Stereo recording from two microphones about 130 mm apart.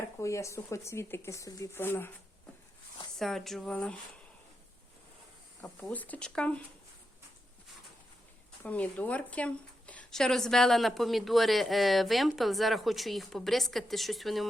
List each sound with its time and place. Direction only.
0.2 s speech: 25° left (ahead or behind)
3.2 s a woman's voice: 5° left (ahead or behind)
5.9 s speech: 10° left (ahead or behind)
8.6 s a woman's voice: 10° left (ahead or behind)